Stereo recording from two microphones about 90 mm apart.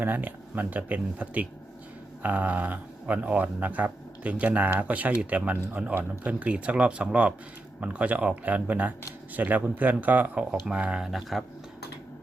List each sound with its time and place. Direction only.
0.0 s speech: 20° right (ahead or behind); by 11.4 s centre (ahead or behind)